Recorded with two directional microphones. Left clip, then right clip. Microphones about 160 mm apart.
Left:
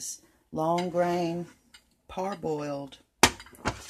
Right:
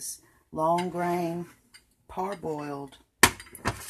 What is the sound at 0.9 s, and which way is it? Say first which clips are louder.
Speech: left 2 dB; 15° left (ahead or behind).